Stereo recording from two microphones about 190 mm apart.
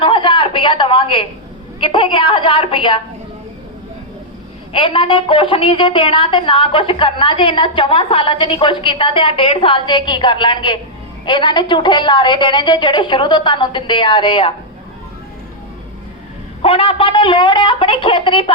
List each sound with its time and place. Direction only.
0.0 s a sound: 25° left (ahead or behind)
1.8 s a woman's voice: 25° left (ahead or behind)
4.7 s a woman's voice: 25° left (ahead or behind)
16.6 s a woman's voice: 30° left (ahead or behind)